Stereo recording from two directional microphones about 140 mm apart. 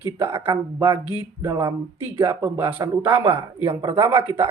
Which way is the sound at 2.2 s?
15° right (ahead or behind).